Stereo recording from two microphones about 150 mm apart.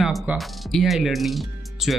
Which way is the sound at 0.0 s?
Centre (ahead or behind).